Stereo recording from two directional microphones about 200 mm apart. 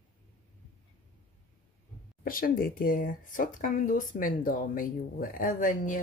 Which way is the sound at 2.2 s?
45° left (ahead or behind).